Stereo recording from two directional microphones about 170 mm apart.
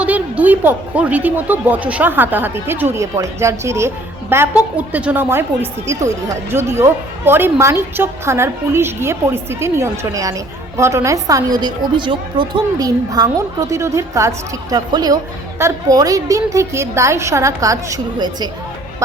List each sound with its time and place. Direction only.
0.0 s a woman's voice: 10° right (ahead or behind)